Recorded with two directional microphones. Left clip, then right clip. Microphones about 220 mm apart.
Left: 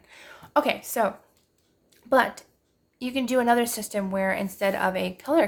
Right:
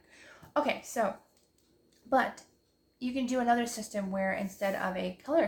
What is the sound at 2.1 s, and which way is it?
Speech, 40° left (ahead or behind).